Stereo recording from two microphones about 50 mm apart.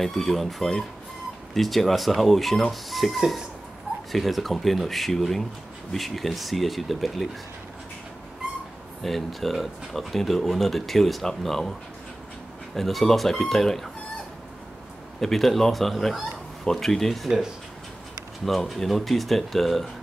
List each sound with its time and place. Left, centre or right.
0.0 s speech: centre
9.0 s speech: centre
12.7 s speech: centre
15.1 s speech: centre
18.4 s speech: centre